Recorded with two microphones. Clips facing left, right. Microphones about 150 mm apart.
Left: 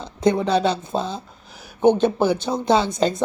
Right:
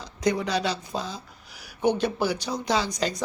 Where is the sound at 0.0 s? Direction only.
25° left (ahead or behind).